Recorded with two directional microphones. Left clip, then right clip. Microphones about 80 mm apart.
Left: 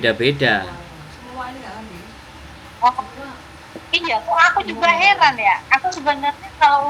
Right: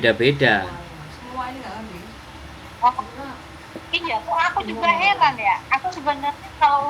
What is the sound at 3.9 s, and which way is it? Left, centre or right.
A woman's voice, left.